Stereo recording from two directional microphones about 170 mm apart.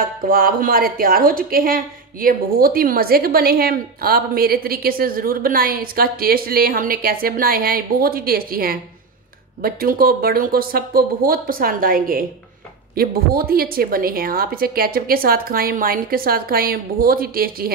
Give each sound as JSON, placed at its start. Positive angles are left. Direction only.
{"t": 0.3, "sound": "a woman's voice", "side_deg": -60}